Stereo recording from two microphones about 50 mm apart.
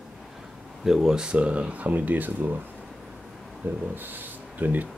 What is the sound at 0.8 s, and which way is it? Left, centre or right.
Speech, centre.